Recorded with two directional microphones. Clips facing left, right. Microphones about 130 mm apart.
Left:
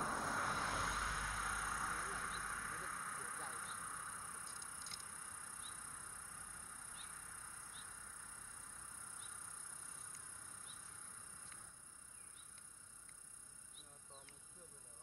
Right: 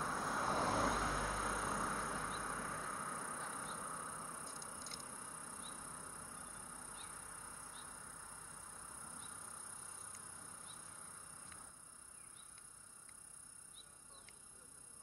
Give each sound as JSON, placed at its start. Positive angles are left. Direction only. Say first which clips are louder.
{"t": 0.4, "sound": "vehicle", "louder": "right 6 dB", "side_deg": -30}